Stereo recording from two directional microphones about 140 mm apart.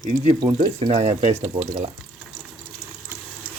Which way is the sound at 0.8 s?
45° right (ahead or behind).